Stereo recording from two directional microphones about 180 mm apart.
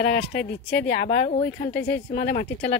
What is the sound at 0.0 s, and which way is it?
Speech, 60° left (ahead or behind).